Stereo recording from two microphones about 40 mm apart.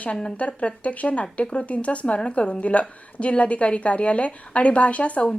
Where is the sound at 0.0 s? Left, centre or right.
Left.